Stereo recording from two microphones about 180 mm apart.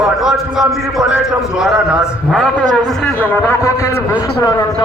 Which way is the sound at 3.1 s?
10° left (ahead or behind).